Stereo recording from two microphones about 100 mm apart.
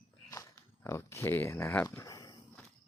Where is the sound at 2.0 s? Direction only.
40° left (ahead or behind).